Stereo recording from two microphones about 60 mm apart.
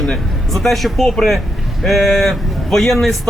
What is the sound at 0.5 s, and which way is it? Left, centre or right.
Speech, centre.